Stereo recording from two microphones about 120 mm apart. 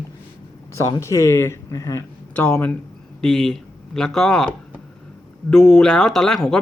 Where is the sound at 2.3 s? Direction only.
15° left (ahead or behind).